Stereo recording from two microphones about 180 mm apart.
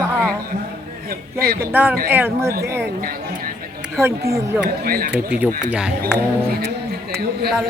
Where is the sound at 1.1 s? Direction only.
55° right (ahead or behind).